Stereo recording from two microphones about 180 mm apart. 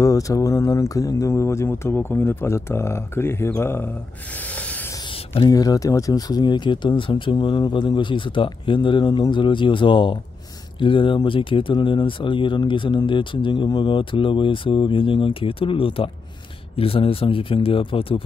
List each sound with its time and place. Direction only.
0.0 s speech: 20° left (ahead or behind)
5.0 s a sound: 30° left (ahead or behind)
5.5 s speech: 20° left (ahead or behind)